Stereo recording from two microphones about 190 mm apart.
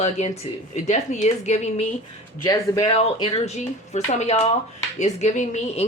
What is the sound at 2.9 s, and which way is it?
Speech, 30° left (ahead or behind).